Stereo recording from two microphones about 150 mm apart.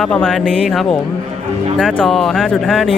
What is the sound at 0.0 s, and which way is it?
Speech, 5° left (ahead or behind).